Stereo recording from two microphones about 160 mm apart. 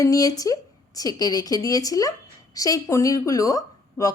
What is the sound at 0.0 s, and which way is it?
Speech, 20° left (ahead or behind).